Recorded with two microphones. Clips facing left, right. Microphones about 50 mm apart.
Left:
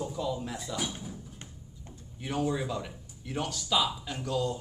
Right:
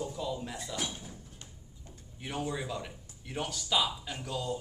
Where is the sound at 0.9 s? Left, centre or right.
Centre.